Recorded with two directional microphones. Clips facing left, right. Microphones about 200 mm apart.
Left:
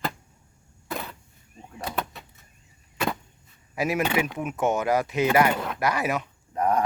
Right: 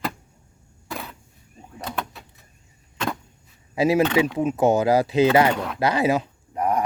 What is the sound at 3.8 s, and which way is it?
Speech, 30° right (ahead or behind).